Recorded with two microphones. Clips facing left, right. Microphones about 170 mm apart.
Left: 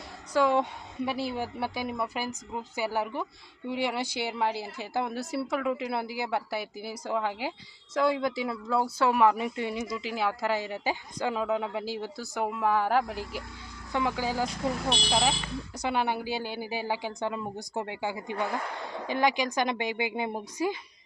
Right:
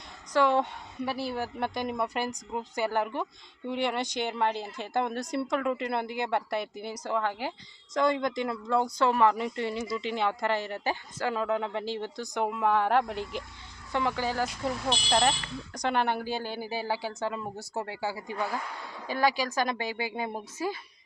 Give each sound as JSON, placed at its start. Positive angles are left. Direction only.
{"t": 0.3, "sound": "a woman's voice", "side_deg": 10}